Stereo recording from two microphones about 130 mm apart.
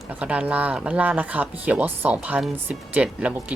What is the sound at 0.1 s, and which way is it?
Speech, 10° right (ahead or behind).